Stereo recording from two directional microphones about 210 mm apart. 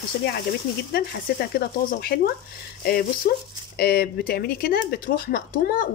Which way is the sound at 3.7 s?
45° left (ahead or behind).